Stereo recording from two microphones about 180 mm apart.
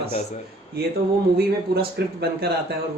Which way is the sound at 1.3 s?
65° right (ahead or behind).